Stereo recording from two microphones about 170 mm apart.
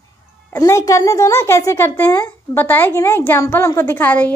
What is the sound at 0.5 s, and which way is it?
A woman's voice, 15° left (ahead or behind).